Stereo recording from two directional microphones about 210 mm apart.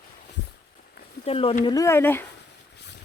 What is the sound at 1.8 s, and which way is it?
Speech, 10° left (ahead or behind).